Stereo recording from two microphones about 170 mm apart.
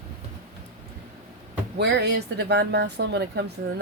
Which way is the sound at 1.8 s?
85° right.